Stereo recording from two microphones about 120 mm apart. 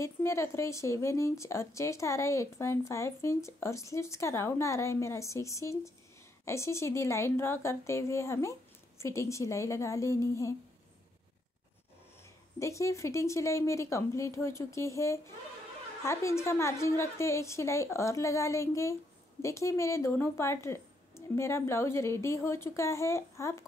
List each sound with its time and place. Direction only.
0.0 s a woman's voice: 25° left (ahead or behind)
12.5 s a woman's voice: 25° left (ahead or behind)